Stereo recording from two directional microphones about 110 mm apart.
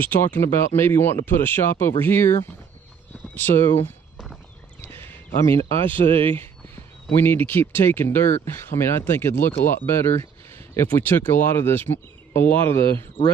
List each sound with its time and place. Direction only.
0.0 s speech: 15° left (ahead or behind)
3.3 s speech: 20° left (ahead or behind)
5.6 s speech: 55° right (ahead or behind)
6.3 s speech: 20° left (ahead or behind)